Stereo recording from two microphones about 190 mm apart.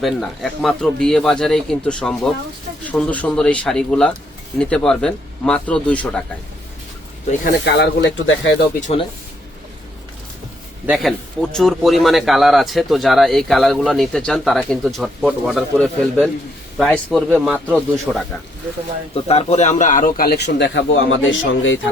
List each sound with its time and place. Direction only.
0.0 s speech: centre (ahead or behind)
7.6 s a man's voice: 60° left (ahead or behind)
8.8 s speech: 30° left (ahead or behind)
10.8 s speech: centre (ahead or behind)
19.1 s a man's voice: 35° left (ahead or behind); by 21.8 s 85° left